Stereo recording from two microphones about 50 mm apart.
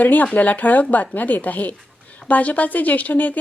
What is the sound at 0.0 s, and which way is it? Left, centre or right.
Speech, left.